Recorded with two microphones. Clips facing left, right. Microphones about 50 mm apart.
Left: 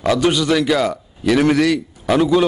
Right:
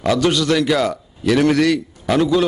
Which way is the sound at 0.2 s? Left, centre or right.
Centre.